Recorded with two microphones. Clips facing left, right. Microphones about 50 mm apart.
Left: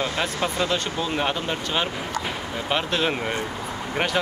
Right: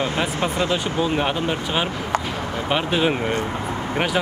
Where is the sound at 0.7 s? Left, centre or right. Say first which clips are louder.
Right 4 dB; centre.